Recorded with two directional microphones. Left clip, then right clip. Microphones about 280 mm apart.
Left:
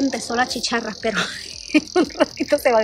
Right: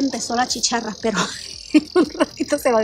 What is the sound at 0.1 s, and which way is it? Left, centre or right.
Speech, centre.